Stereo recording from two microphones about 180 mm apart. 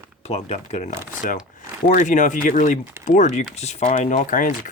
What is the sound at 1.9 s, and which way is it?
Speech, 45° left (ahead or behind).